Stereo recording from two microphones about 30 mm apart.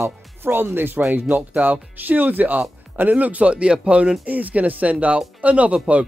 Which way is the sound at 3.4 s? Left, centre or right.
Right.